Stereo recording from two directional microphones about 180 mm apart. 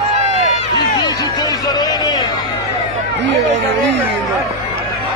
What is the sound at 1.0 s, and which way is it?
Music, 20° left (ahead or behind).